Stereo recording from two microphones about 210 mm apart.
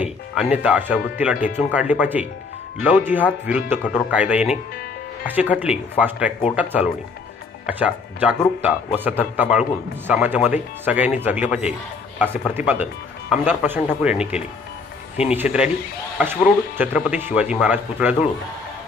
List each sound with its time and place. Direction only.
0.0 s speech: 5° right (ahead or behind)
16.7 s speech: 5° right (ahead or behind)